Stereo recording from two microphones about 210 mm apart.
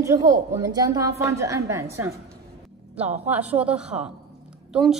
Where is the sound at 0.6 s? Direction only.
15° right (ahead or behind).